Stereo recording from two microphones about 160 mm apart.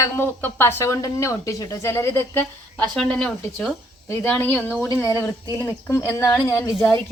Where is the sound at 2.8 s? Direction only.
5° left (ahead or behind).